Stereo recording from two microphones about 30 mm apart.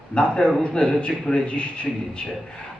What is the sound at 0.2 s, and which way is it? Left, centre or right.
Speech, left.